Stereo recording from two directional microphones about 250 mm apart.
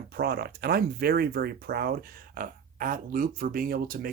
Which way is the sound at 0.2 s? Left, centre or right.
Right.